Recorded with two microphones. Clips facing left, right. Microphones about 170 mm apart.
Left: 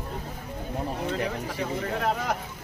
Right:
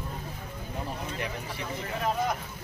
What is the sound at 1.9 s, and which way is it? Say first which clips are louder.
Speech: right 1 dB; 70° left (ahead or behind).